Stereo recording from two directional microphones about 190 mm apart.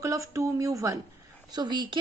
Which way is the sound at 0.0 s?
15° right (ahead or behind).